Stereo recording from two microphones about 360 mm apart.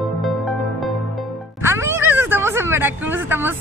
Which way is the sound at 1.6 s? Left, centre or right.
Centre.